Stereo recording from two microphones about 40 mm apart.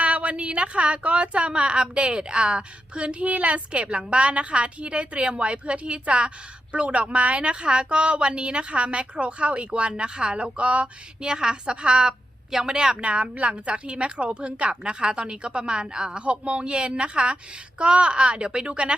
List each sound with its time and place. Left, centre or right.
0.0 s a woman's voice: right
11.2 s a woman's voice: centre